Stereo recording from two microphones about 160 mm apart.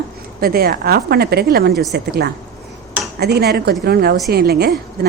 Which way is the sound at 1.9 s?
85° right.